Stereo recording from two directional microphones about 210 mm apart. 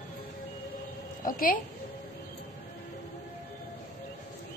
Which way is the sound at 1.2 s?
45° left (ahead or behind).